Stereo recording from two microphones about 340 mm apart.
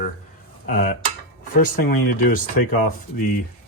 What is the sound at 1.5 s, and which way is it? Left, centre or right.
Speech, left.